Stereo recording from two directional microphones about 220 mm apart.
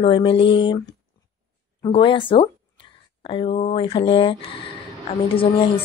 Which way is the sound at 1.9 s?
20° left (ahead or behind).